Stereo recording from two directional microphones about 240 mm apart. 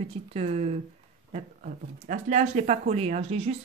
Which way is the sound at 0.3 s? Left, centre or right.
Right.